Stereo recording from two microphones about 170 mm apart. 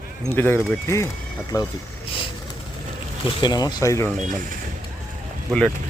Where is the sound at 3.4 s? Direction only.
25° left (ahead or behind).